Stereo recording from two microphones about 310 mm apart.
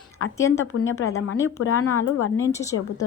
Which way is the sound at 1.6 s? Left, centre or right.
Left.